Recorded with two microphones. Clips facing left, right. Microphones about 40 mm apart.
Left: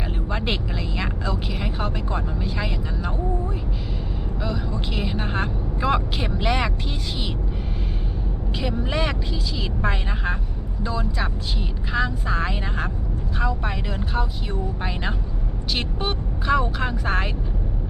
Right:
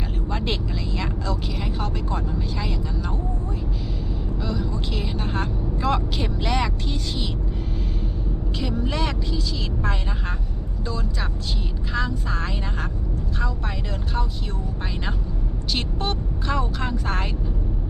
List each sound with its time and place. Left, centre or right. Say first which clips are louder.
0.3 s speech: left 1 dB; centre
4.4 s a woman's voice: even; centre
8.5 s a woman's voice: left 1 dB; centre
15.7 s a woman's voice: even; centre